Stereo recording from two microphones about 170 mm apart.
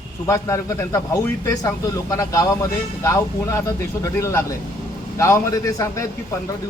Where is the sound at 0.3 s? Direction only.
20° left (ahead or behind).